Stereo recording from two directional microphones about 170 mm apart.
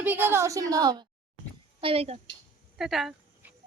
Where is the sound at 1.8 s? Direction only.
35° right (ahead or behind).